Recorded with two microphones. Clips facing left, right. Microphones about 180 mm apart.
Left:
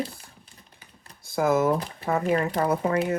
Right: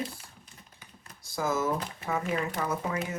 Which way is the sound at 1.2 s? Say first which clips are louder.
Left 7 dB; 60° left (ahead or behind).